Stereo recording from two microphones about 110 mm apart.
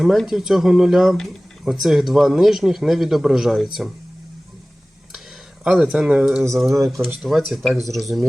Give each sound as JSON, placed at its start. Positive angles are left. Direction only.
{"t": 0.0, "sound": "speech", "side_deg": -5}
{"t": 5.6, "sound": "speech", "side_deg": -10}
{"t": 6.7, "sound": "speech", "side_deg": -25}
{"t": 7.2, "sound": "speech", "side_deg": 0}